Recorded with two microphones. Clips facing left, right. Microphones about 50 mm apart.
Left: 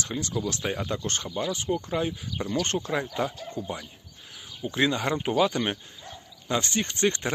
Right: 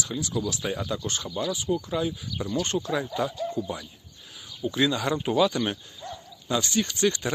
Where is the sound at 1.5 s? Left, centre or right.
Left.